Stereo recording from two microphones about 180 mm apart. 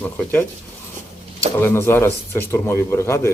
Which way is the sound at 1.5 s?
15° left (ahead or behind).